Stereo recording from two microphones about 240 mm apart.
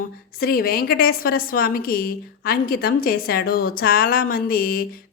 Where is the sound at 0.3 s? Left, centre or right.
Left.